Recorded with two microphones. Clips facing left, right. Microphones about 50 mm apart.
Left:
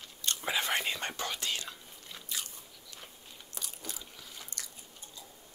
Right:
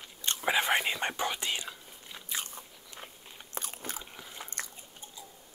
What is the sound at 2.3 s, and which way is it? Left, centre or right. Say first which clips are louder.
Biting: right 4 dB; right.